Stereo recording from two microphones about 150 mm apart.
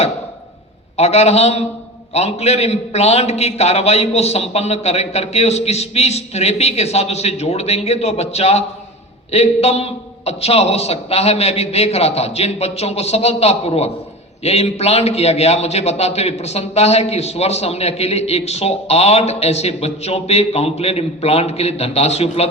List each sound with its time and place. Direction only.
0.9 s a man's voice: 45° left (ahead or behind)